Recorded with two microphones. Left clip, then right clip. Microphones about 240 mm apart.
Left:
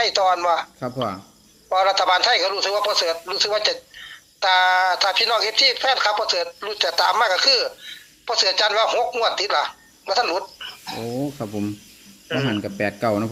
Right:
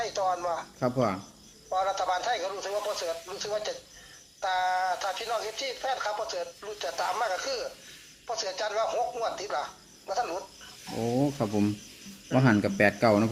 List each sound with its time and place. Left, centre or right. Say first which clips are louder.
0.0 s speech: left 11 dB; left
1.7 s speech: left 10 dB; left
2.9 s speech: left 12 dB; left
7.1 s a woman's voice: left 13 dB; left
11.0 s speech: right 1 dB; centre
12.3 s speech: left 1 dB; centre